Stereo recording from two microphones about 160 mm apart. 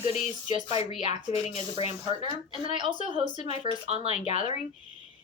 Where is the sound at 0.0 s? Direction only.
40° left (ahead or behind).